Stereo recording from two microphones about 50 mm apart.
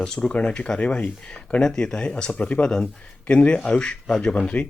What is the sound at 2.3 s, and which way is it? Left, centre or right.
Speech, left.